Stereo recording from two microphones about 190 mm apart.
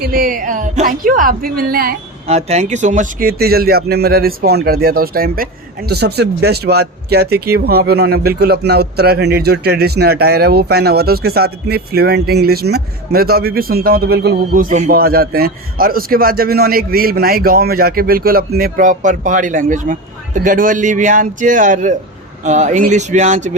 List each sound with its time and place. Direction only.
0.0 s speech: 50° right (ahead or behind)
2.2 s speech: 35° right (ahead or behind)